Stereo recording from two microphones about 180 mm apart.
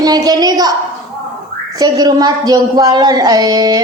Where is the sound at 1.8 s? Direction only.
20° right (ahead or behind).